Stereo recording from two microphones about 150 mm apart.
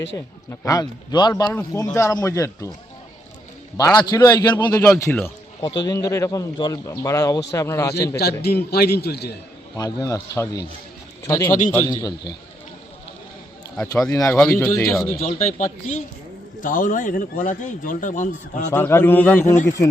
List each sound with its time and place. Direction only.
0.5 s speech: 20° left (ahead or behind)
3.8 s speech: 25° left (ahead or behind)
8.1 s a man's voice: 90° left
9.7 s speech: 25° left (ahead or behind)
14.1 s speech: 25° left (ahead or behind)
15.3 s a man's voice: 50° left (ahead or behind)
18.7 s a man's voice: 15° left (ahead or behind)